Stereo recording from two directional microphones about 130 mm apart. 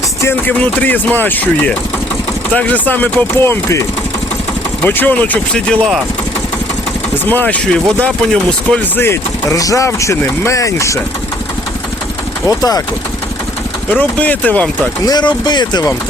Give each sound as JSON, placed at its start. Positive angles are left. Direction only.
{"t": 0.2, "sound": "speech", "side_deg": 15}
{"t": 7.3, "sound": "speech", "side_deg": 10}
{"t": 9.0, "sound": "speech", "side_deg": 25}
{"t": 12.5, "sound": "speech", "side_deg": 30}
{"t": 13.9, "sound": "speech", "side_deg": 10}
{"t": 15.0, "sound": "speech", "side_deg": 35}